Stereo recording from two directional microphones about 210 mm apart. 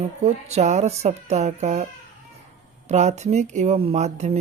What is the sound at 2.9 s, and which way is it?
Speech, 30° right (ahead or behind).